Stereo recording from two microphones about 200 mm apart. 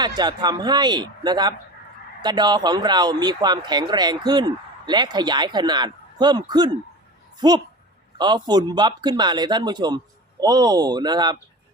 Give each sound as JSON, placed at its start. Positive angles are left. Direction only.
{"t": 0.0, "sound": "speech", "side_deg": -20}